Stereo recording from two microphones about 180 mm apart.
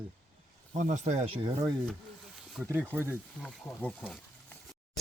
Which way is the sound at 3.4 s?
5° left (ahead or behind).